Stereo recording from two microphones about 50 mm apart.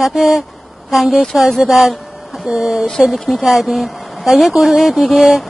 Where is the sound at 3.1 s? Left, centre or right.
Centre.